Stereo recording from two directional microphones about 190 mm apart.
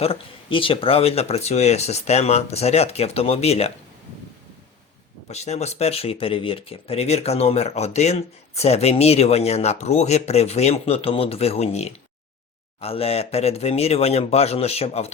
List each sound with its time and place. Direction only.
0.0 s speech: 30° left (ahead or behind)
5.3 s speech: 35° left (ahead or behind)